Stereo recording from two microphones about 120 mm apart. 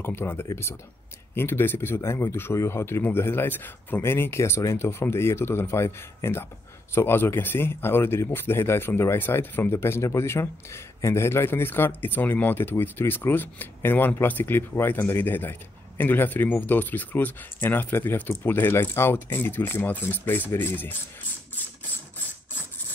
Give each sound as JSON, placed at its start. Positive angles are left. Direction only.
{"t": 0.0, "sound": "speech", "side_deg": 20}